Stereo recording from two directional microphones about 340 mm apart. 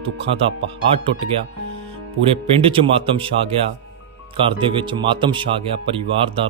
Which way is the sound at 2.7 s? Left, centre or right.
Centre.